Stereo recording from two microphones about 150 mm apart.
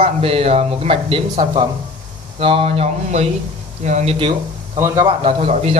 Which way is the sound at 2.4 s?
40° right (ahead or behind).